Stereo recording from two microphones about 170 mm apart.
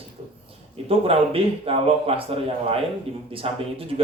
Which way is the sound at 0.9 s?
35° right (ahead or behind).